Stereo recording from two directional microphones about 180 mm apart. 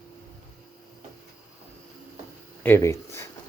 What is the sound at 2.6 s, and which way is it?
Speech, 15° left (ahead or behind).